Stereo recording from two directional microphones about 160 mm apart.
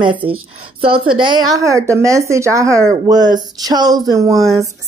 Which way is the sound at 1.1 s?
30° right (ahead or behind).